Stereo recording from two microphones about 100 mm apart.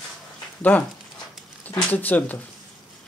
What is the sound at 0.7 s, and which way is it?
Speech, 20° left (ahead or behind).